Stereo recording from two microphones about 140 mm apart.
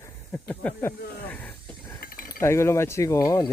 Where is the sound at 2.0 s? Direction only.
90° left.